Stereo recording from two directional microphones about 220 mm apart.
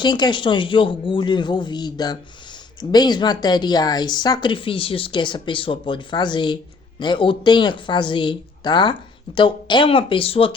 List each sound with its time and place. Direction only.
0.0 s a woman's voice: 20° left (ahead or behind)